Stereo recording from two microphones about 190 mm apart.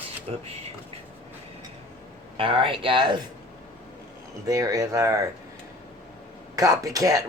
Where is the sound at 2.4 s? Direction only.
25° right (ahead or behind).